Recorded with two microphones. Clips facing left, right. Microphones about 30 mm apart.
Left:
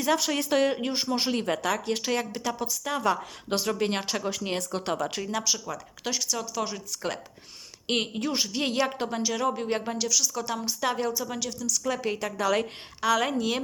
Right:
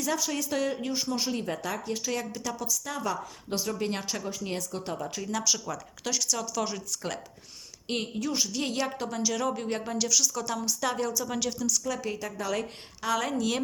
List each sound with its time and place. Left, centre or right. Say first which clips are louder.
0.2 s speech: left 5 dB; left
5.3 s speech: even; centre
7.9 s a woman's voice: left 3 dB; left; by 10.0 s centre
10.0 s a woman's voice: even; centre
11.3 s speech: right 2 dB; centre
11.9 s speech: left 4 dB; left